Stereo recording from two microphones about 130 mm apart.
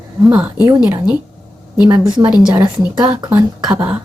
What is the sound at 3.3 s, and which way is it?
Speech, 10° right (ahead or behind).